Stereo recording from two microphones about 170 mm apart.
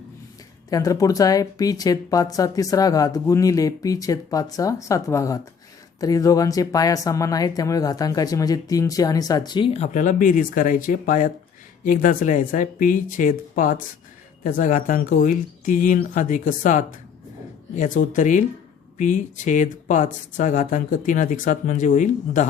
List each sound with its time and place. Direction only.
0.7 s speech: 20° left (ahead or behind); by 22.4 s 45° left (ahead or behind)